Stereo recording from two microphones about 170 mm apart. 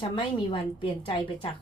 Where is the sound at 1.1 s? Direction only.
30° left (ahead or behind).